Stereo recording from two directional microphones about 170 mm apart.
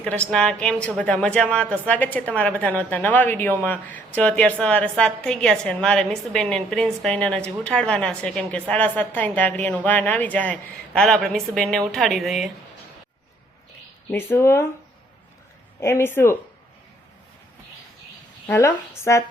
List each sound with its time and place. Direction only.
0.0 s a woman's voice: 5° left (ahead or behind)
14.1 s a woman's voice: 15° left (ahead or behind)
15.8 s a woman's voice: 15° left (ahead or behind)
18.4 s a woman's voice: 15° left (ahead or behind)